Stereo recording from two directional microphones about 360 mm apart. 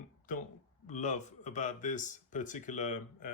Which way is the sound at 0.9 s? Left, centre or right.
Centre.